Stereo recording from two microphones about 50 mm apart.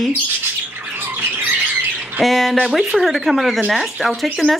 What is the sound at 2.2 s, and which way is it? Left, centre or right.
Speech, centre.